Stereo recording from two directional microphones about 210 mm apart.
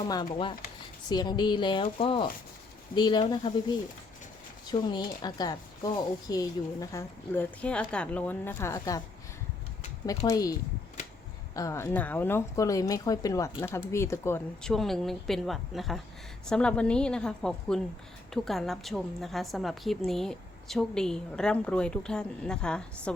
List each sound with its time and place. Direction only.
1.0 s speech: 20° left (ahead or behind)
4.6 s speech: 20° left (ahead or behind)
10.2 s a woman's voice: 15° left (ahead or behind)